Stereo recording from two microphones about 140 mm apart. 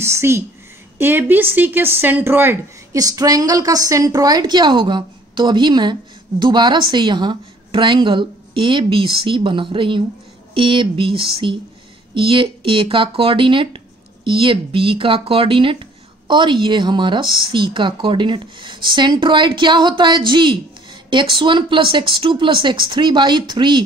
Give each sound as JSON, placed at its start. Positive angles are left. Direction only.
{"t": 0.0, "sound": "a woman's voice", "side_deg": -20}